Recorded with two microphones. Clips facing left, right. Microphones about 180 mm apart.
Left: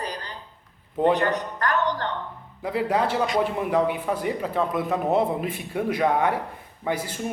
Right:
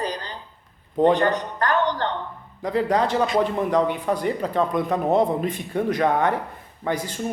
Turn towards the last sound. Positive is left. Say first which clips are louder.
# right 1 dB
turn(degrees=10)  # may be behind; listen again after turning